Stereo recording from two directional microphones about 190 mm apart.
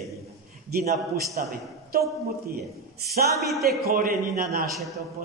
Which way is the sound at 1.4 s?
50° right (ahead or behind).